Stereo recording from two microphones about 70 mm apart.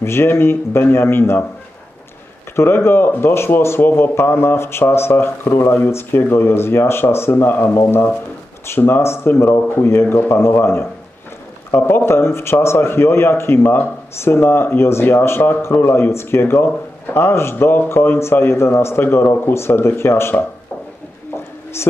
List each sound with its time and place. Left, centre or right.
0.0 s a man's voice: left
2.5 s a man's voice: left
21.8 s a man's voice: left